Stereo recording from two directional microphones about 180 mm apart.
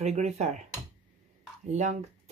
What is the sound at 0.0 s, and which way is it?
Speech, 35° right (ahead or behind).